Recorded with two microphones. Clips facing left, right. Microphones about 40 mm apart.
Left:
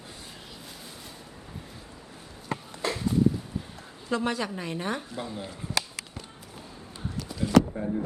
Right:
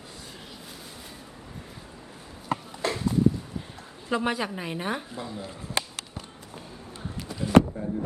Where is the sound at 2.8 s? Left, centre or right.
Centre.